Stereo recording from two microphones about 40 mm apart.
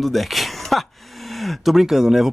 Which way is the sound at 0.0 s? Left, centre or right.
Centre.